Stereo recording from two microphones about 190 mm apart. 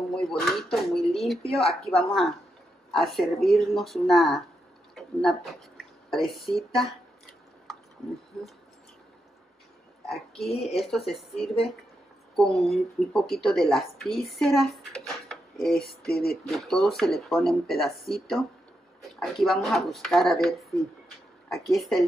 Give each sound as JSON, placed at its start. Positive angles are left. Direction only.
{"t": 0.1, "sound": "speech", "side_deg": 5}
{"t": 10.0, "sound": "a sound", "side_deg": 0}
{"t": 10.5, "sound": "speech", "side_deg": 30}
{"t": 10.8, "sound": "speech", "side_deg": 0}